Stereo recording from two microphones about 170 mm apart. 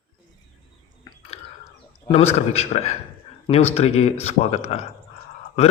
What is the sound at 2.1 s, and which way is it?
A man's voice, 35° left (ahead or behind).